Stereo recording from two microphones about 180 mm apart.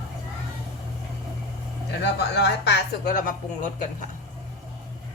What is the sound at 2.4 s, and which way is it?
Speech, 70° left (ahead or behind).